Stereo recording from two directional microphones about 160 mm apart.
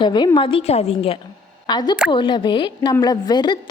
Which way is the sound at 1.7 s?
25° left (ahead or behind).